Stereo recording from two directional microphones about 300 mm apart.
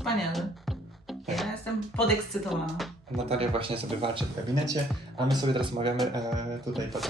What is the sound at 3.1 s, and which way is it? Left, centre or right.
Speech, centre.